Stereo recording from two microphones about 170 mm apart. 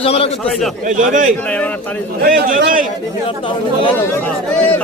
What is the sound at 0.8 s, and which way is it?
Speech, 45° right (ahead or behind).